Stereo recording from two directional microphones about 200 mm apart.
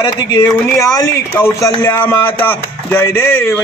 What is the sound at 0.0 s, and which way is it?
Speech, 20° left (ahead or behind).